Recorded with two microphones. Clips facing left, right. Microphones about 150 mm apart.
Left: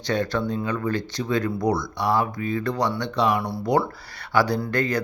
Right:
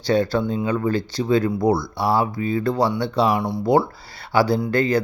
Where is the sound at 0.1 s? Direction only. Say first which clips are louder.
Right 5 dB; 30° right (ahead or behind).